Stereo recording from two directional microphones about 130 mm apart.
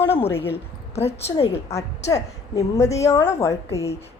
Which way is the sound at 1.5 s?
25° left (ahead or behind).